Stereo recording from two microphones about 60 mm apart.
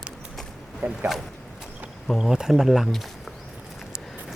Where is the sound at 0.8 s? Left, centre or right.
Right.